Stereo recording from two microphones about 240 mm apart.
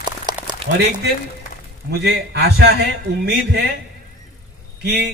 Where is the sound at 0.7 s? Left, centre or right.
Right.